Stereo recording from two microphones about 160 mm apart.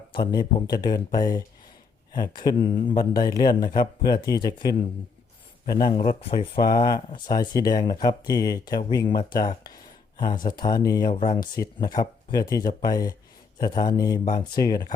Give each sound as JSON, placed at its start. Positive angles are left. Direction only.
{"t": 0.3, "sound": "speech", "side_deg": 25}
{"t": 5.9, "sound": "speech", "side_deg": 40}